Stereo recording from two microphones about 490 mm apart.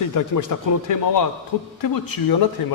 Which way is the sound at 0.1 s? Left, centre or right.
Left.